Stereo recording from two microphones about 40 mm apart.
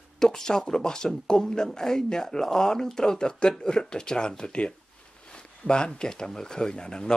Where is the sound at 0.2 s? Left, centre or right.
Centre.